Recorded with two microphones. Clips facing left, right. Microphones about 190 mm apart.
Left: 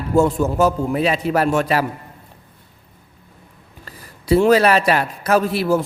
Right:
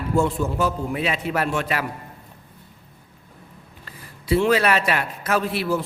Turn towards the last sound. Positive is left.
turn(degrees=45)  # may be behind; listen again after turning